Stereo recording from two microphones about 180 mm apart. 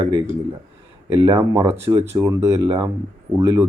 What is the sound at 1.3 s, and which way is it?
Speech, 15° right (ahead or behind).